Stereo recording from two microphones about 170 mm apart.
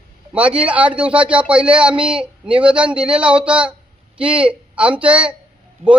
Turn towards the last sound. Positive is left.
turn(degrees=-40)  # may be behind; listen again after turning